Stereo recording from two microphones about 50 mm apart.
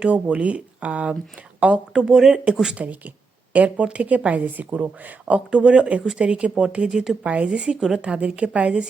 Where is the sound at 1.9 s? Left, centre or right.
Centre.